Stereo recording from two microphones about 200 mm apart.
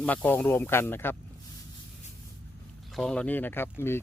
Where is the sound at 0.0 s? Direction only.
10° left (ahead or behind).